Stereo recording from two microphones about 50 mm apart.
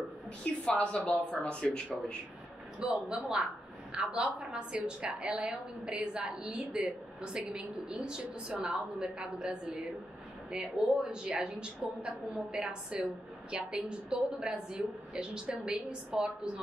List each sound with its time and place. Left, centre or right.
0.7 s speech: left
2.8 s a woman's voice: centre